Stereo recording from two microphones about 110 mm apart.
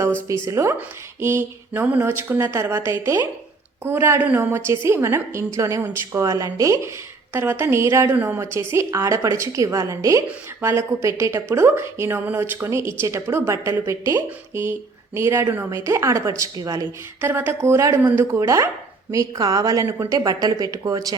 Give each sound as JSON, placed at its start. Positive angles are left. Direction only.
{"t": 0.3, "sound": "a woman's voice", "side_deg": -25}
{"t": 17.2, "sound": "a woman's voice", "side_deg": -20}